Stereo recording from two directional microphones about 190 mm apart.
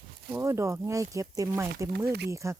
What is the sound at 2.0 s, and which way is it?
Speech, 60° right (ahead or behind).